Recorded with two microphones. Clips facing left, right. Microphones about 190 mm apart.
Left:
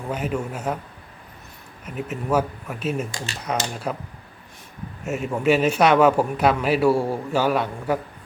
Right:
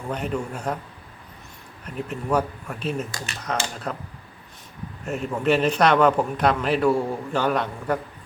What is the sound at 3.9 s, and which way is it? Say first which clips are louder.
A man's voice: left 3 dB; 15° left (ahead or behind).